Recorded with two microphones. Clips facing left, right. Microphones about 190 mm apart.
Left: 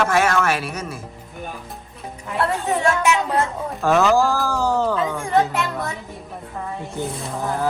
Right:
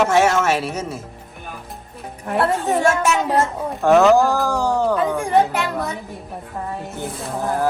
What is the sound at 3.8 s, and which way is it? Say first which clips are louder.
Speech: right 4 dB; 15° right (ahead or behind).